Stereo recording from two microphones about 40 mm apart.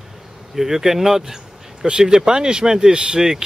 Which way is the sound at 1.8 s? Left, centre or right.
Right.